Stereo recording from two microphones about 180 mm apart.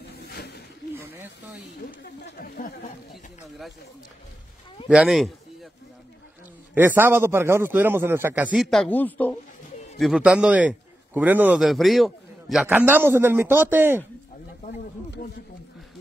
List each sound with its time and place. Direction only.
0.0 s snake: 65° left (ahead or behind)
0.9 s snake: 15° right (ahead or behind)
2.2 s speech: 55° left (ahead or behind)
3.1 s a man's voice: centre (ahead or behind)
4.8 s a man's voice: 5° right (ahead or behind)
6.7 s a man's voice: 10° right (ahead or behind)
8.6 s speech: 5° left (ahead or behind)
9.9 s a man's voice: centre (ahead or behind)
12.6 s a man's voice: 10° right (ahead or behind)